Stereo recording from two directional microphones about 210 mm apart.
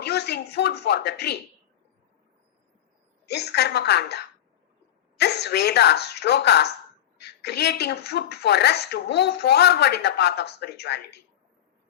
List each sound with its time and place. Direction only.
0.0 s speech: 50° left (ahead or behind)
3.2 s a woman's voice: 50° left (ahead or behind)